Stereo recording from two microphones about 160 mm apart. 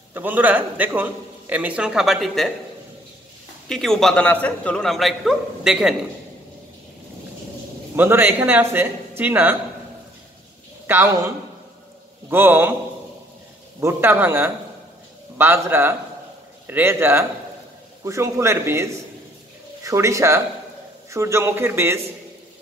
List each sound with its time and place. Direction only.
0.1 s a man's voice: 10° right (ahead or behind)
3.6 s a man's voice: 5° left (ahead or behind)
7.9 s a man's voice: 15° right (ahead or behind)
10.9 s a man's voice: 15° right (ahead or behind)
13.7 s a man's voice: 15° right (ahead or behind)